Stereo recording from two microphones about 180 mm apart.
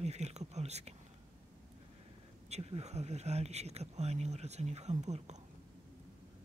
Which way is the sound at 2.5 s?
35° right (ahead or behind).